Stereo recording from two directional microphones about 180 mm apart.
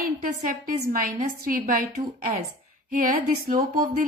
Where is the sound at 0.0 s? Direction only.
45° right (ahead or behind).